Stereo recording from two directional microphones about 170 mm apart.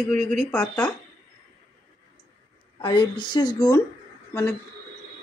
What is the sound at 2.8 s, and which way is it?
A woman's voice, 25° left (ahead or behind).